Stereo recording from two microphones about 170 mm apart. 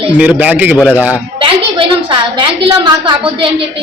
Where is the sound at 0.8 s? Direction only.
10° left (ahead or behind).